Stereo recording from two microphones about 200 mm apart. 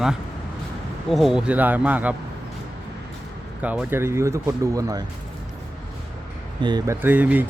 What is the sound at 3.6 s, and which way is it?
A man's voice, 10° right (ahead or behind).